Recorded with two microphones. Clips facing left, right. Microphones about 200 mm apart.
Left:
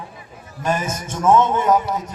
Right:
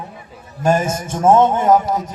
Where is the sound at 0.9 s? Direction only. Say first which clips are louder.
Even; 50° right (ahead or behind).